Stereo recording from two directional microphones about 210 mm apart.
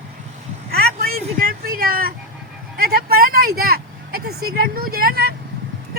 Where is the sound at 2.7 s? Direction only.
45° right (ahead or behind).